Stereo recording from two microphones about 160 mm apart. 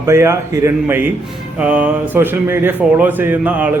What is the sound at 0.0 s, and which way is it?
A man's voice, 15° right (ahead or behind).